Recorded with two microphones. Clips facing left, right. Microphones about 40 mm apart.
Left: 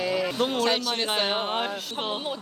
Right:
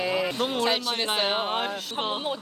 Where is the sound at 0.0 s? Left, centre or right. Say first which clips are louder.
Even; centre.